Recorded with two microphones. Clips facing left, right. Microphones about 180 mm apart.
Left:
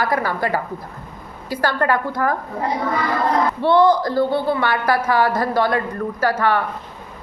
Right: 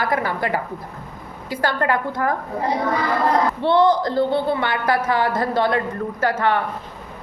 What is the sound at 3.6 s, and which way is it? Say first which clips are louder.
A woman's voice: left 3 dB; 25° right (ahead or behind).